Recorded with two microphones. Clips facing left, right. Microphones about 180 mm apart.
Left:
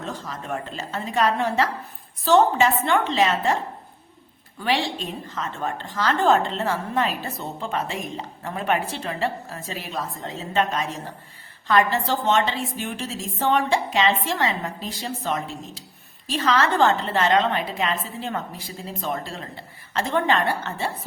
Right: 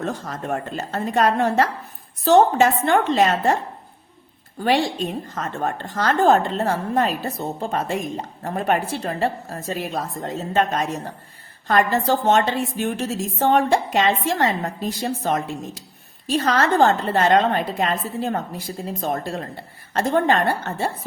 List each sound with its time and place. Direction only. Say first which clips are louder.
0.0 s a woman's voice: right 5 dB; 50° right (ahead or behind)